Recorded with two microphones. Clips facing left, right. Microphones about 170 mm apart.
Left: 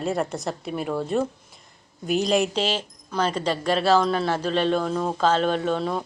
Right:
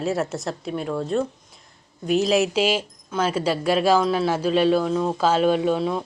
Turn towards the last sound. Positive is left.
turn(degrees=-5)  # may be behind; listen again after turning